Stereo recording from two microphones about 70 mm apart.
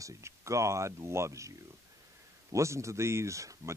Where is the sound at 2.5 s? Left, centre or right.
Right.